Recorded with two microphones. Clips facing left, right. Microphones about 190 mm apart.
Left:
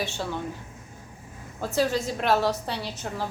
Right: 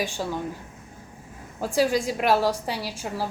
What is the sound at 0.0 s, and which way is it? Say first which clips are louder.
Speech: right 2 dB; 10° right (ahead or behind).